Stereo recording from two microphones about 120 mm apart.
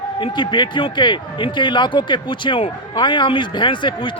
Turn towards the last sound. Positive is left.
turn(degrees=40)  # may be behind; listen again after turning